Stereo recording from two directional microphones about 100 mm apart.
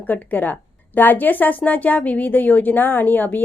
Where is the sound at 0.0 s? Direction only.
15° left (ahead or behind).